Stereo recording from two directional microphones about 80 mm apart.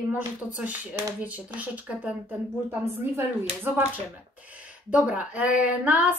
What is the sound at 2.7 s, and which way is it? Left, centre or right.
Speech, right.